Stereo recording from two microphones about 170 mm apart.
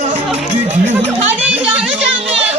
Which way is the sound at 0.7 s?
45° right (ahead or behind).